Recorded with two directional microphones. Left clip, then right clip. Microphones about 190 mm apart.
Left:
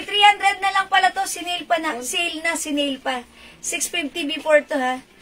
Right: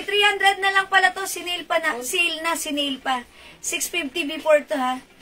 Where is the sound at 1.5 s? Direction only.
15° right (ahead or behind).